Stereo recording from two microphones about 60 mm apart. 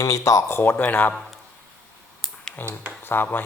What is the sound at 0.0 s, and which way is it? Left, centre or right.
Speech, left.